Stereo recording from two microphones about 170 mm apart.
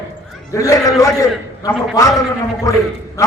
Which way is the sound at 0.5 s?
20° left (ahead or behind).